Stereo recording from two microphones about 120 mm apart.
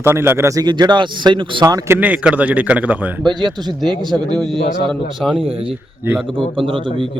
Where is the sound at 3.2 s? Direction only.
35° right (ahead or behind).